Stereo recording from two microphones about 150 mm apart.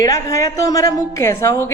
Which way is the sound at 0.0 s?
20° left (ahead or behind).